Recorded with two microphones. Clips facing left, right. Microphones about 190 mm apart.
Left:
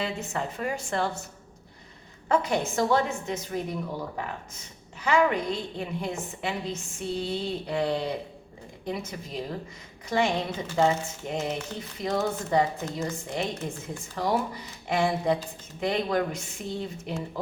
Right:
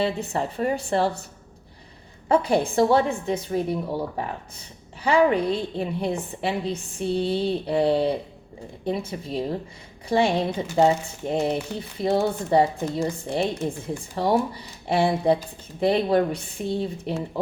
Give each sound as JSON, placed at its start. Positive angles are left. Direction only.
{"t": 0.0, "sound": "a woman's voice", "side_deg": -35}
{"t": 2.3, "sound": "a woman's voice", "side_deg": -30}